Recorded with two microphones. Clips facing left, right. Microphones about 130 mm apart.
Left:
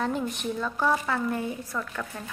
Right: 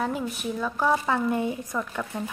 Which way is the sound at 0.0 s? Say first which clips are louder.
Even; 5° right (ahead or behind).